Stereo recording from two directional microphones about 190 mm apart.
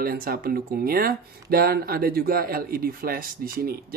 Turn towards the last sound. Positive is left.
turn(degrees=-50)  # may be behind; listen again after turning